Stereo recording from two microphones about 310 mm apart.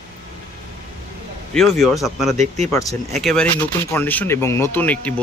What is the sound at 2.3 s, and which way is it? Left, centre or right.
Speech, right.